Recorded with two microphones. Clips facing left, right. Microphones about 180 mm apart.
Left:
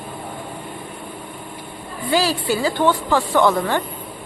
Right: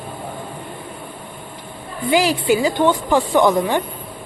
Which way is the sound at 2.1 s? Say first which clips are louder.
Right 3 dB; 15° right (ahead or behind).